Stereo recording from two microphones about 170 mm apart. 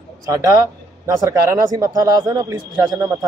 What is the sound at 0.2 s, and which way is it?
A man's voice, 20° right (ahead or behind).